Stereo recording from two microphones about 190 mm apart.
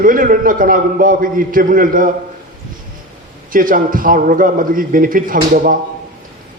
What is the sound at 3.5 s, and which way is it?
A man's voice, 45° right (ahead or behind).